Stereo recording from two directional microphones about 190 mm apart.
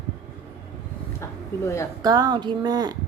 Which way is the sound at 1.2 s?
15° left (ahead or behind).